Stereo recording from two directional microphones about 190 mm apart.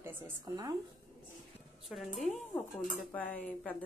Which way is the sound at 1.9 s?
Centre (ahead or behind).